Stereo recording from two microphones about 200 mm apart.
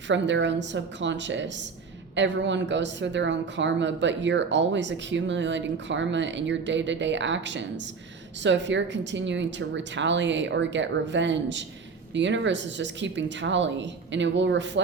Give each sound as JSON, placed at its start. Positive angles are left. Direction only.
{"t": 0.1, "sound": "a woman's voice", "side_deg": -65}